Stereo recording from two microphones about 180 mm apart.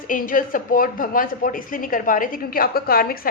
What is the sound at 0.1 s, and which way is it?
A woman's voice, 50° left (ahead or behind).